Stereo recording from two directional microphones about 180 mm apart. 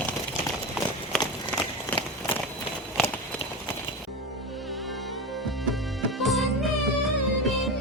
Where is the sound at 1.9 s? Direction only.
10° left (ahead or behind).